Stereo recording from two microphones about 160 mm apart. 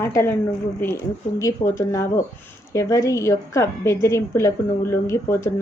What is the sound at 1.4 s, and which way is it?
A woman's voice, 20° left (ahead or behind).